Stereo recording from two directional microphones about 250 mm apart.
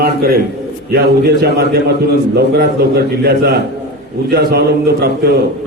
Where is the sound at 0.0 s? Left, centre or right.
Right.